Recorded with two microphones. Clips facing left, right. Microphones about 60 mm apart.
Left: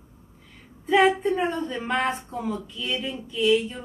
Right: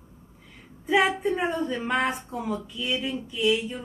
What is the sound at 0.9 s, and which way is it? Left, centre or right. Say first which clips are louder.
Speech: left 3 dB; centre.